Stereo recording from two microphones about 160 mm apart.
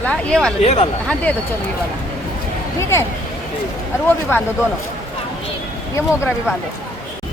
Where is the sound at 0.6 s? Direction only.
40° left (ahead or behind).